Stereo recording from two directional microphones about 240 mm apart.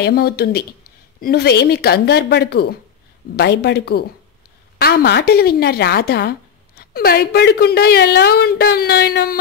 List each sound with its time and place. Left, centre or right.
0.0 s a woman's voice: left